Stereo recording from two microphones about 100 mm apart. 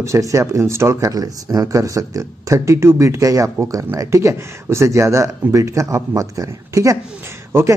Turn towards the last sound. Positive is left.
turn(degrees=-25)  # may be behind; listen again after turning